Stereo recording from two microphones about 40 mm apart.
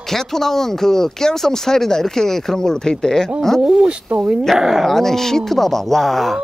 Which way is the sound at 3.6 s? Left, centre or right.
Centre.